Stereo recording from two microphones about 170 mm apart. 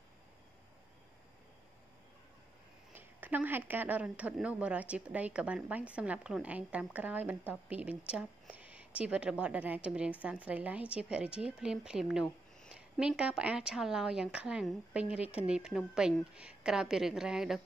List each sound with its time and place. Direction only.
3.0 s a woman's voice: 10° right (ahead or behind)